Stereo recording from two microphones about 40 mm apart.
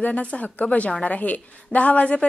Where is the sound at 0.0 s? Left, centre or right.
Left.